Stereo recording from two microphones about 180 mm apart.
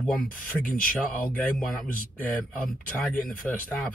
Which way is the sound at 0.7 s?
50° left (ahead or behind).